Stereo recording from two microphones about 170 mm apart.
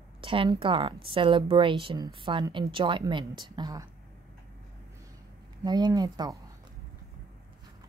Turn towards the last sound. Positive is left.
turn(degrees=-25)  # may be behind; listen again after turning